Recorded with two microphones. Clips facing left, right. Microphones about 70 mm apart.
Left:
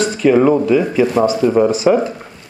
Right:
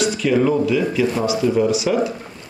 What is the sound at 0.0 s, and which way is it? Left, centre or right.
Speech, left.